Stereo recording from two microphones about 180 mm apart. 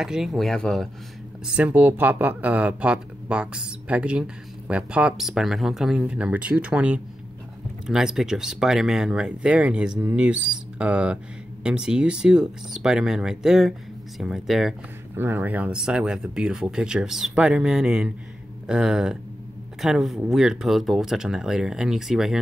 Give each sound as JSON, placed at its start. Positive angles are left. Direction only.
{"t": 0.0, "sound": "speech", "side_deg": 0}